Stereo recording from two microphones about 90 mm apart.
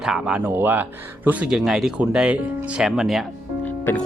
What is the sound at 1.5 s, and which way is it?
Speech, 5° right (ahead or behind).